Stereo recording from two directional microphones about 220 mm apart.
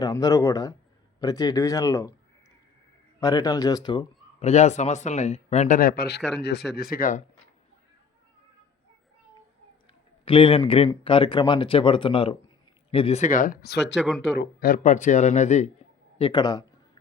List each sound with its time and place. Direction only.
0.0 s speech: 15° left (ahead or behind)
3.2 s a man's voice: 15° left (ahead or behind); by 7.2 s 40° left (ahead or behind)
10.2 s a man's voice: 25° left (ahead or behind)